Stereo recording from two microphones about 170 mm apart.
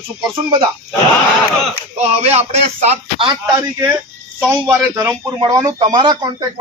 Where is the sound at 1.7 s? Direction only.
40° right (ahead or behind).